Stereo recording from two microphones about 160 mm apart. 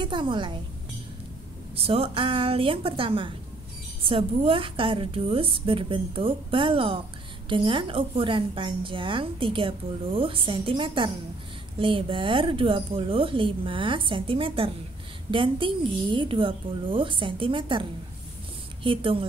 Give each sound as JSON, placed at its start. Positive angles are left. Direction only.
{"t": 0.0, "sound": "a woman's voice", "side_deg": -30}
{"t": 1.8, "sound": "a woman's voice", "side_deg": -35}